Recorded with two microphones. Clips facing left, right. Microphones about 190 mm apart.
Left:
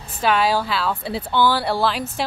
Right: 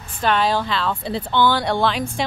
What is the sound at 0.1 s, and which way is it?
A woman's voice, 5° left (ahead or behind).